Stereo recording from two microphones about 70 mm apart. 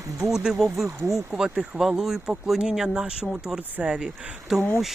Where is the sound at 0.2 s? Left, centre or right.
Centre.